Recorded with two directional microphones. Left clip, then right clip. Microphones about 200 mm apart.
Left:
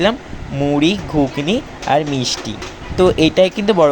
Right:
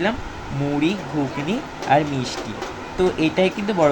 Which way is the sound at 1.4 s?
45° left (ahead or behind).